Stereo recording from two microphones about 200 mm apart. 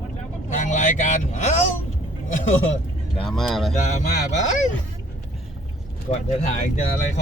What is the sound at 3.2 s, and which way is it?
Speech, centre (ahead or behind).